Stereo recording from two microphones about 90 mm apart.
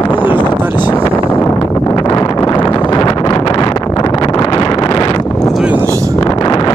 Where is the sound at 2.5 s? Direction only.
50° left (ahead or behind).